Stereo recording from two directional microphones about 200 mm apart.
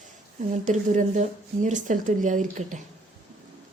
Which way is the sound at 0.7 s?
40° right (ahead or behind).